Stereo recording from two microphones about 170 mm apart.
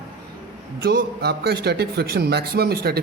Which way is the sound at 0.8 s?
65° right (ahead or behind).